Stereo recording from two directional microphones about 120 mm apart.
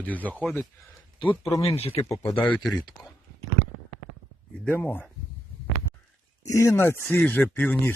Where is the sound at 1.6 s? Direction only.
55° left (ahead or behind).